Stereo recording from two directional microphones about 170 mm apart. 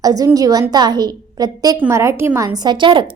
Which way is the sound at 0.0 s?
20° right (ahead or behind).